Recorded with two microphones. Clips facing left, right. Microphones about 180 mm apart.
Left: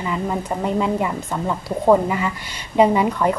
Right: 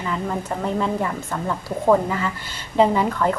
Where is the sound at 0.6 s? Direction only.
15° left (ahead or behind).